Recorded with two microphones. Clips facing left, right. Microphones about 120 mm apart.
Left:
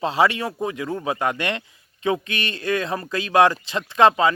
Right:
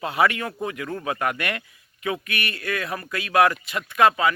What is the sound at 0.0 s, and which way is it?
Speech, 25° left (ahead or behind).